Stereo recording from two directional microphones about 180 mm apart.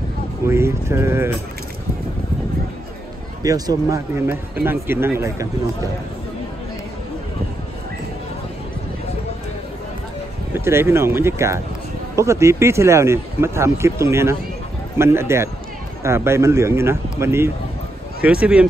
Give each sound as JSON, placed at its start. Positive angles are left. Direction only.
{"t": 0.5, "sound": "speech", "side_deg": -15}
{"t": 3.4, "sound": "speech", "side_deg": -20}
{"t": 10.5, "sound": "speech", "side_deg": -15}